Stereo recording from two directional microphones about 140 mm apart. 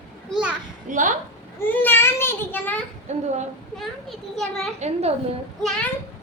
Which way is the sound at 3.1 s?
55° right (ahead or behind).